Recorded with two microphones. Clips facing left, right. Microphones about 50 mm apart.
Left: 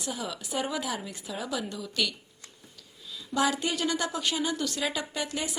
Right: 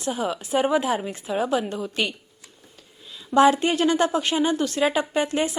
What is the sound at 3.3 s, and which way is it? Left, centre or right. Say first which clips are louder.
A woman's voice: right 10 dB; right.